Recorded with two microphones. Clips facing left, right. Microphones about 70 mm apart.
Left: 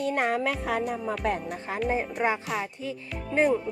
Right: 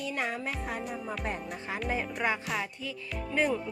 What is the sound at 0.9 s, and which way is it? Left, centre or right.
Music, left.